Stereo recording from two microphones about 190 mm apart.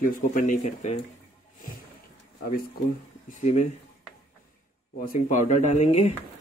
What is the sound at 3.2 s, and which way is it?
Speech, 40° left (ahead or behind).